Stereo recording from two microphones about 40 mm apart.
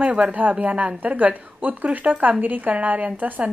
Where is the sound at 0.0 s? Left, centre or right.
Right.